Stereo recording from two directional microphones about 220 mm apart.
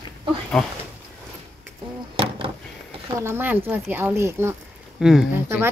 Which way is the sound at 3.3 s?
10° right (ahead or behind).